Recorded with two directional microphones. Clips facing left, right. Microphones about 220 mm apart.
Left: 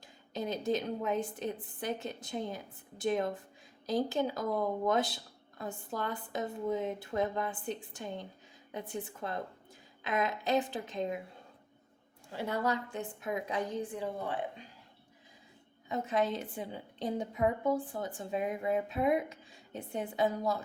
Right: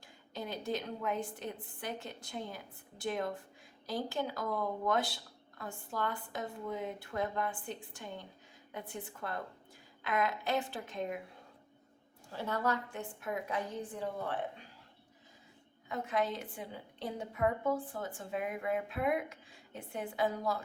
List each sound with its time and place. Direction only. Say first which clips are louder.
0.3 s speech: left 5 dB; 20° left (ahead or behind)
12.3 s a woman's voice: left 2 dB; 15° left (ahead or behind)
15.9 s speech: left 3 dB; 20° left (ahead or behind)